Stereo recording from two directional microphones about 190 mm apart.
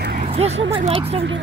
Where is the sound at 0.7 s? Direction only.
30° right (ahead or behind).